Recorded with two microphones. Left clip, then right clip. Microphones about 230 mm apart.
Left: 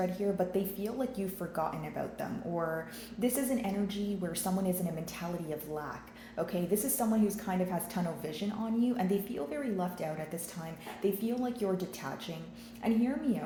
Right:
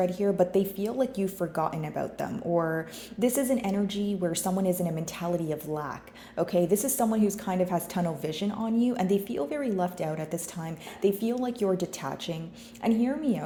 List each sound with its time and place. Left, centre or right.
0.0 s a woman's voice: right